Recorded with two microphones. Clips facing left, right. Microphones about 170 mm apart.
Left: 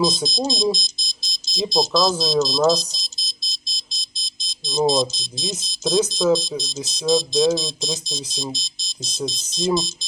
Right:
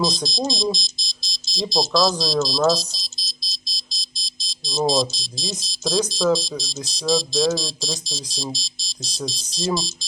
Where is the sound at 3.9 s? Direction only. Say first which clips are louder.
Right 1 dB; 55° left (ahead or behind).